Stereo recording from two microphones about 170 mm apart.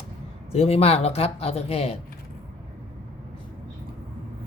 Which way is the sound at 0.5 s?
35° left (ahead or behind).